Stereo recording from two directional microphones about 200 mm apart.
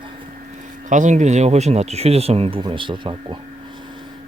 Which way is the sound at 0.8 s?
40° right (ahead or behind).